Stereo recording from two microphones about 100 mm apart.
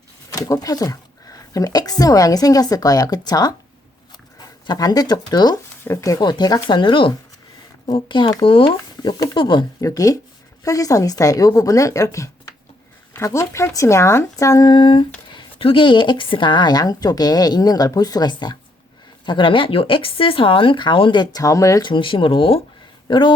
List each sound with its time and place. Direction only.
0.3 s speech: 35° left (ahead or behind)
5.8 s a woman's voice: 30° left (ahead or behind); by 9.6 s 50° left (ahead or behind)
9.8 s a woman's voice: 35° left (ahead or behind); by 21.4 s 50° left (ahead or behind)
21.4 s speech: 35° left (ahead or behind)
21.8 s speech: 55° left (ahead or behind)